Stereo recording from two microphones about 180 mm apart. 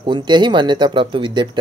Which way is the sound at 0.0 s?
25° right (ahead or behind).